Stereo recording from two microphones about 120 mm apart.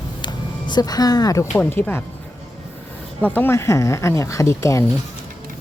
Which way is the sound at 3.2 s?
15° left (ahead or behind).